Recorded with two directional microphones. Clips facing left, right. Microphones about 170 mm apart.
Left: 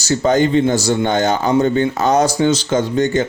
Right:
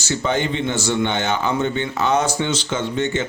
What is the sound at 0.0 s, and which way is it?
Speech, 40° left (ahead or behind).